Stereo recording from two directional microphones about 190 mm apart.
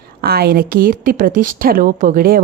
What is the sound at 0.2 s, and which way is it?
A woman's voice, 55° right (ahead or behind).